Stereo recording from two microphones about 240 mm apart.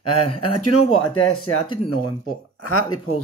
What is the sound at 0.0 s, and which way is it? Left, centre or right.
Speech, left.